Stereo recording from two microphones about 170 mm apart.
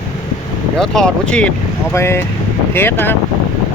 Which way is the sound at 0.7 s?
5° left (ahead or behind).